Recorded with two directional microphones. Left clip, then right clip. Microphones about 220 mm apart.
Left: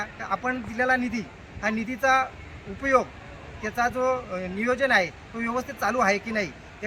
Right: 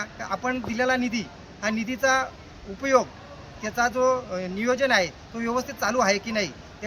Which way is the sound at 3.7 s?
Centre (ahead or behind).